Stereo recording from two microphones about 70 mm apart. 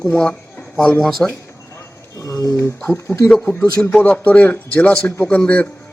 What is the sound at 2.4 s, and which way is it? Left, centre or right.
Speech, left.